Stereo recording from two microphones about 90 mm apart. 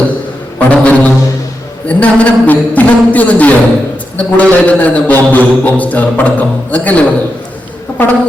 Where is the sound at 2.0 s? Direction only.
15° left (ahead or behind).